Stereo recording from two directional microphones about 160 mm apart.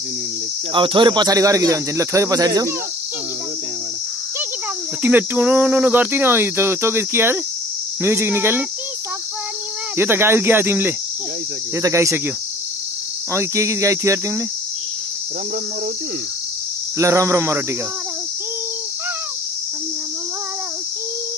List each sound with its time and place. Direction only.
0.7 s speech: 30° right (ahead or behind)
5.0 s speech: 10° right (ahead or behind)
9.9 s speech: 15° right (ahead or behind)
13.3 s speech: 15° right (ahead or behind)
17.0 s speech: 20° right (ahead or behind)